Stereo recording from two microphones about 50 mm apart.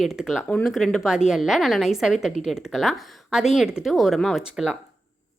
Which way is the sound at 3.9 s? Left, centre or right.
Centre.